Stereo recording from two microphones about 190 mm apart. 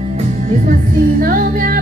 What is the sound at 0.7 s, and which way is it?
Music, 50° right (ahead or behind).